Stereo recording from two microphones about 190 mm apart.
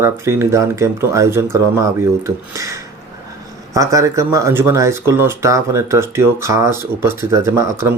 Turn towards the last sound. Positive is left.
turn(degrees=-15)  # may be behind; listen again after turning